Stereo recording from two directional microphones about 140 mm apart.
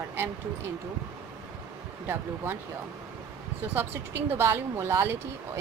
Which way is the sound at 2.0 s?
15° right (ahead or behind).